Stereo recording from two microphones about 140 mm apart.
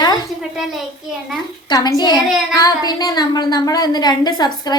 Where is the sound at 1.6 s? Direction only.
30° left (ahead or behind).